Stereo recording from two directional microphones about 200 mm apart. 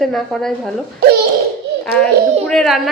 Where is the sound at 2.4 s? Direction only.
Centre (ahead or behind).